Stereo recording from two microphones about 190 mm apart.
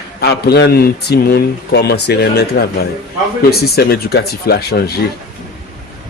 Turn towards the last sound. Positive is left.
turn(degrees=55)  # may be behind; listen again after turning